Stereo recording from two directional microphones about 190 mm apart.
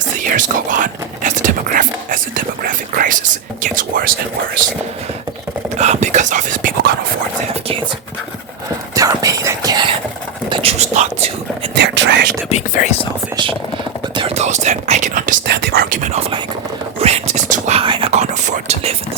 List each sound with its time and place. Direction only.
0.2 s whispering: 45° right (ahead or behind)
3.6 s speech: 45° right (ahead or behind)
5.7 s speech: 40° right (ahead or behind)
9.0 s a sound: 20° right (ahead or behind)
10.5 s whispering: 30° right (ahead or behind)
11.7 s whispering: 65° right (ahead or behind)
12.5 s whispering: 40° left (ahead or behind)
13.3 s a sound: 25° right (ahead or behind)
14.2 s whispering: 35° right (ahead or behind)
15.4 s whispering: 55° right (ahead or behind); by 18.9 s 35° right (ahead or behind)